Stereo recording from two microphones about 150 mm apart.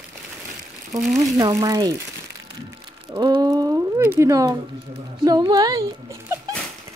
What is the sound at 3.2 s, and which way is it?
Speech, 25° right (ahead or behind).